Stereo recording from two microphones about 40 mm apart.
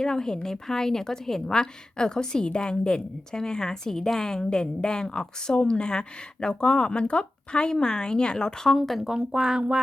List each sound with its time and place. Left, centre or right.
0.0 s a woman's voice: centre
9.1 s speech: right